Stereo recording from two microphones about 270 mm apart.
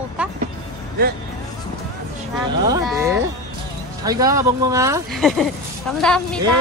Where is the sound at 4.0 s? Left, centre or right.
Centre.